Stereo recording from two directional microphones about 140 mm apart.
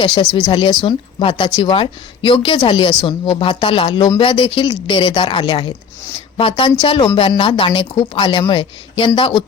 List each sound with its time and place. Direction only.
0.0 s speech: 40° left (ahead or behind)